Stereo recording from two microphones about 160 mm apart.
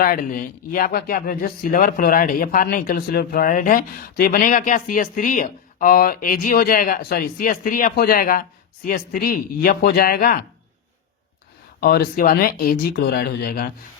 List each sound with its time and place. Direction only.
0.0 s speech: 60° left (ahead or behind)
11.8 s speech: 65° left (ahead or behind)